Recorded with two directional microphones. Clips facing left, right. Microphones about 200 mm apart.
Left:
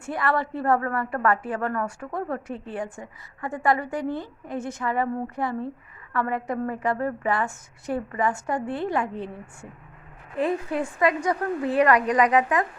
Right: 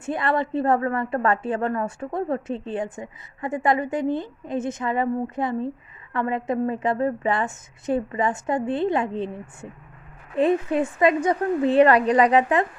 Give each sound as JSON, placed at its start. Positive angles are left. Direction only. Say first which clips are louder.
{"t": 0.0, "sound": "a woman's voice", "louder": "right 2 dB", "side_deg": -20}